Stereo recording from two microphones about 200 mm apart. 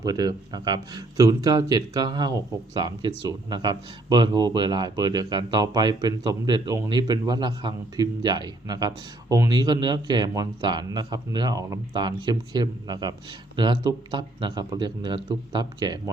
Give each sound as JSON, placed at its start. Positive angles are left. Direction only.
{"t": 0.0, "sound": "speech", "side_deg": -20}